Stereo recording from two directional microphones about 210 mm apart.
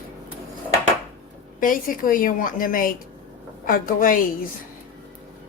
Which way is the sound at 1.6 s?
40° left (ahead or behind).